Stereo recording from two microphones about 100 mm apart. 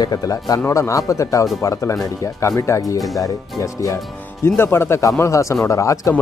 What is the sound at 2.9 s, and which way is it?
Speech, centre (ahead or behind).